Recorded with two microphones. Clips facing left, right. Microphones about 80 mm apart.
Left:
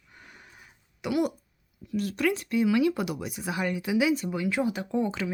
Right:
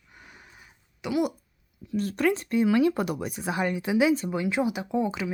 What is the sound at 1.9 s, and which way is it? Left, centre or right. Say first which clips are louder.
Speech: right 2 dB; right.